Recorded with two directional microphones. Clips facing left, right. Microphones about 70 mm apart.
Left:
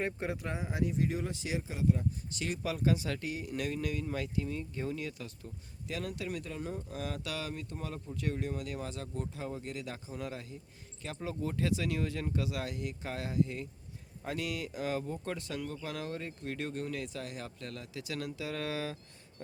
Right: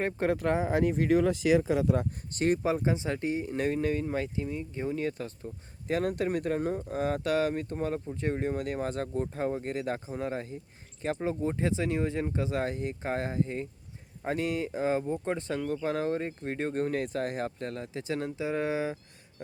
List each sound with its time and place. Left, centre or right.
0.2 s speech: right
0.6 s speech: right
2.3 s speech: right
4.9 s speech: right